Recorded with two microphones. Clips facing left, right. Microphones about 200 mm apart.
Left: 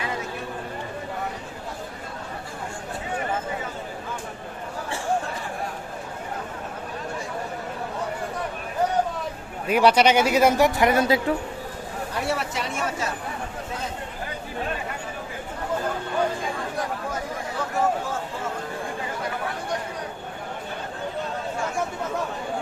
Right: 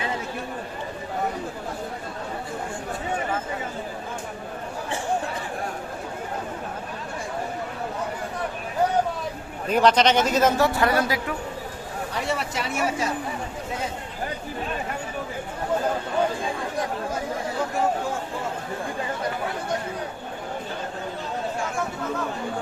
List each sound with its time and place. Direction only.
9.6 s a man's voice: 10° left (ahead or behind)
12.3 s speech: centre (ahead or behind)